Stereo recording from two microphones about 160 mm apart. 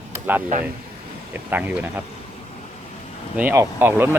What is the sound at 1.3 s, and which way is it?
Speech, 10° right (ahead or behind).